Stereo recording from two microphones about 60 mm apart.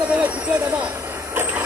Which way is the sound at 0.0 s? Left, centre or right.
Right.